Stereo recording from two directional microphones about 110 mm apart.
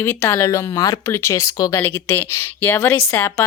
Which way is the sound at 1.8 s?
20° left (ahead or behind).